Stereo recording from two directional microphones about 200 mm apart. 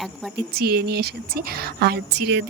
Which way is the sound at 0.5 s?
50° right (ahead or behind).